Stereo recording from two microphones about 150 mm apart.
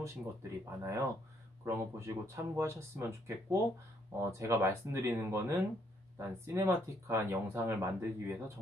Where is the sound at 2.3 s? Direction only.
20° right (ahead or behind).